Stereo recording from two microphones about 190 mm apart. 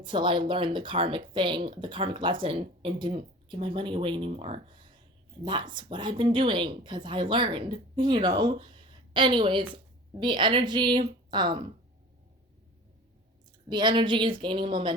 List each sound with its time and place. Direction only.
0.0 s speech: 25° right (ahead or behind)
13.7 s speech: 25° right (ahead or behind)